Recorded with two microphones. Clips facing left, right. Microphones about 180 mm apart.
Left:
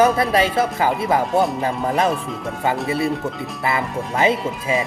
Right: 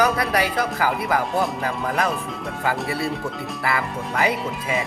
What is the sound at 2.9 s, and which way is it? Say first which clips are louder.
A man's voice: left 4 dB; 20° left (ahead or behind).